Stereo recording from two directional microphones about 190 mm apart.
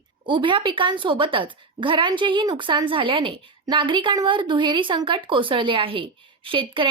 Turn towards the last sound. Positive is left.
turn(degrees=-25)  # may be behind; listen again after turning